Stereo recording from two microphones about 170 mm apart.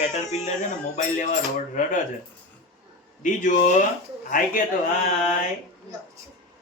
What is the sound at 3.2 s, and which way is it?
Speech, 50° left (ahead or behind).